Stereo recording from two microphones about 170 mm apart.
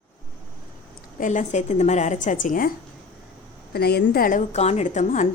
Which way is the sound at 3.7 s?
70° left (ahead or behind).